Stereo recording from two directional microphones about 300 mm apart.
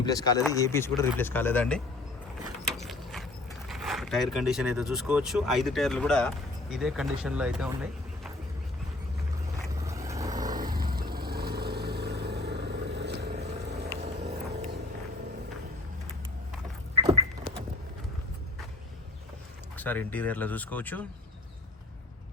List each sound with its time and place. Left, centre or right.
0.0 s speech: centre
2.6 s mechanisms: centre
3.7 s speech: centre
9.8 s vehicle: centre
10.8 s vehicle: right
14.3 s vehicle: right
16.9 s a sound: centre
19.7 s speech: centre